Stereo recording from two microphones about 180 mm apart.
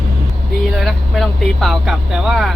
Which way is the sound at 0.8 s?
Centre (ahead or behind).